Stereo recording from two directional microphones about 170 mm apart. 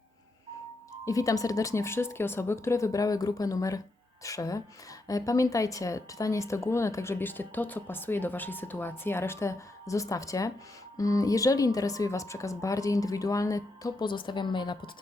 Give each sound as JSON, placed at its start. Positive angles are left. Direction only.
{"t": 1.0, "sound": "a woman's voice", "side_deg": 20}